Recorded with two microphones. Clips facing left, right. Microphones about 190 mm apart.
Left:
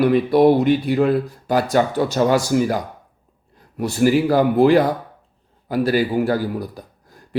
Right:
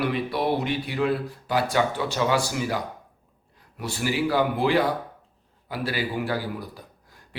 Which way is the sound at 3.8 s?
45° left (ahead or behind).